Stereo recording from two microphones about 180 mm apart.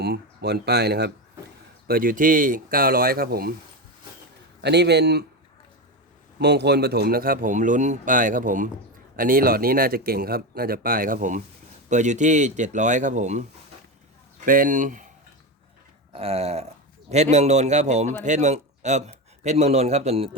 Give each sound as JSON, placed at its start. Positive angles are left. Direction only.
{"t": 0.0, "sound": "speech", "side_deg": -65}
{"t": 1.9, "sound": "speech", "side_deg": -50}
{"t": 4.6, "sound": "speech", "side_deg": -70}
{"t": 6.4, "sound": "speech", "side_deg": -70}
{"t": 14.4, "sound": "speech", "side_deg": -50}
{"t": 16.1, "sound": "a man's voice", "side_deg": -35}